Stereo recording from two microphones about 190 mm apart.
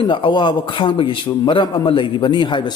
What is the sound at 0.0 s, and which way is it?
A man's voice, 25° left (ahead or behind).